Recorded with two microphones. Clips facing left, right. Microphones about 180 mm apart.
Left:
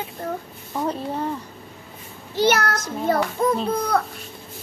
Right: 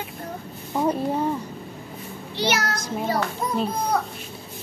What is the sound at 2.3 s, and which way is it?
A child's voice, 50° left (ahead or behind).